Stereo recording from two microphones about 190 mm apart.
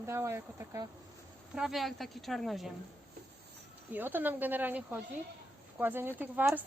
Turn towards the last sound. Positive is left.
turn(degrees=-10)  # may be behind; listen again after turning